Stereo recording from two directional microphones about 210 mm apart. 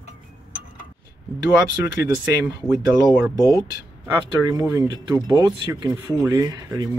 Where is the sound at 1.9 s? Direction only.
15° right (ahead or behind).